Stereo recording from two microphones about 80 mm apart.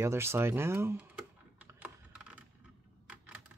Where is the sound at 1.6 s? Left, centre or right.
Centre.